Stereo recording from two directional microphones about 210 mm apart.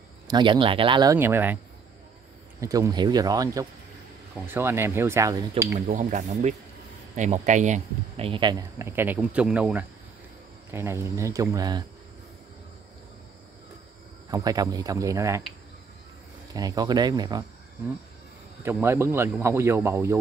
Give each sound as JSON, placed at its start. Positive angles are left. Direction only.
{"t": 0.3, "sound": "speech", "side_deg": -20}
{"t": 1.1, "sound": "speech", "side_deg": -10}
{"t": 2.6, "sound": "speech", "side_deg": -15}
{"t": 5.9, "sound": "speech", "side_deg": -35}
{"t": 14.3, "sound": "speech", "side_deg": -15}
{"t": 16.5, "sound": "speech", "side_deg": -15}
{"t": 18.6, "sound": "speech", "side_deg": -10}